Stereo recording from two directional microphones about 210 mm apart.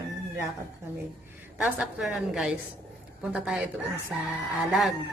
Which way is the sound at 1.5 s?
5° right (ahead or behind).